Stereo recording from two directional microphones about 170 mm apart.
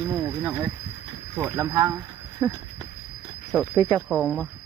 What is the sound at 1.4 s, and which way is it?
Speech, 15° right (ahead or behind).